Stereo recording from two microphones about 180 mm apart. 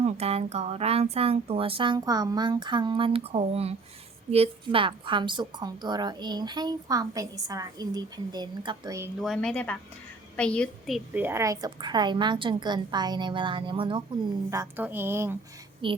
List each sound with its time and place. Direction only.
0.0 s a woman's voice: 35° right (ahead or behind)
9.2 s a woman's voice: centre (ahead or behind); by 14.0 s 30° right (ahead or behind)
14.5 s a woman's voice: 15° right (ahead or behind)
15.8 s a woman's voice: 30° right (ahead or behind)